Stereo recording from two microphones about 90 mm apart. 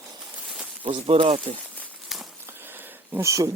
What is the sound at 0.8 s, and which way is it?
Speech, 70° right (ahead or behind).